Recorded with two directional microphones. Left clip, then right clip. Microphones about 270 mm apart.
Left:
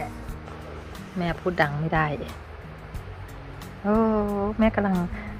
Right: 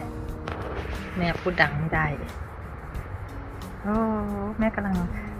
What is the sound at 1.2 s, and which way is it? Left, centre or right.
Speech, centre.